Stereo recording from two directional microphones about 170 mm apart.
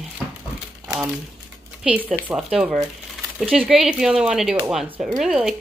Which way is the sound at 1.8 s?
10° right (ahead or behind).